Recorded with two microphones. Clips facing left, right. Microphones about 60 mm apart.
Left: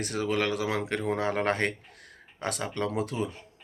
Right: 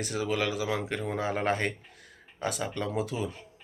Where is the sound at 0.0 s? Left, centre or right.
Left.